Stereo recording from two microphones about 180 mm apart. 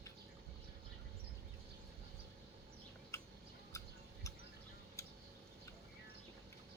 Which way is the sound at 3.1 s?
15° left (ahead or behind).